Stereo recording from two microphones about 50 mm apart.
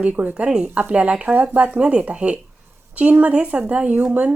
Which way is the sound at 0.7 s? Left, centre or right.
Right.